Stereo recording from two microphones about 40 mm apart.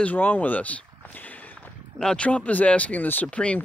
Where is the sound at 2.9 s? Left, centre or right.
Left.